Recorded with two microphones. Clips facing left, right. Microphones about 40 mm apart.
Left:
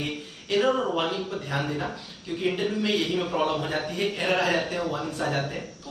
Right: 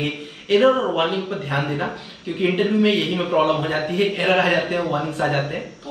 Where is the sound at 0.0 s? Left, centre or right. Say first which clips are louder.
Right 6 dB; right.